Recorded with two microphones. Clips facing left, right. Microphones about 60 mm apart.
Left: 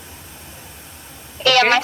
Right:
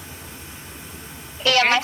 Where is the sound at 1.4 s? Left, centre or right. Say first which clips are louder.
Left 4 dB; left.